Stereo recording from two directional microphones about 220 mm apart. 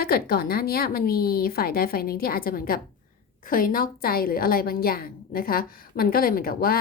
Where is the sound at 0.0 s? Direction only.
45° left (ahead or behind).